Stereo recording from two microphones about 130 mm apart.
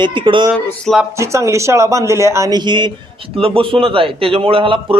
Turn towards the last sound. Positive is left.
turn(degrees=-45)  # may be behind; listen again after turning